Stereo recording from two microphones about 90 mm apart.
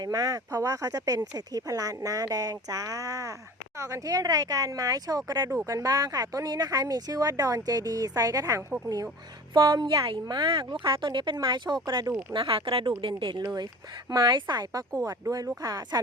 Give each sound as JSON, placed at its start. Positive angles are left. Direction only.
{"t": 0.0, "sound": "speech", "side_deg": -45}
{"t": 9.8, "sound": "speech", "side_deg": -45}
{"t": 10.1, "sound": "speech", "side_deg": -60}
{"t": 12.3, "sound": "speech", "side_deg": -75}
{"t": 13.4, "sound": "speech", "side_deg": -50}